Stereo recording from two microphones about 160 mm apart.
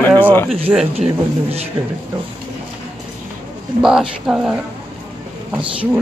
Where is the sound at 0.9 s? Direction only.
40° right (ahead or behind).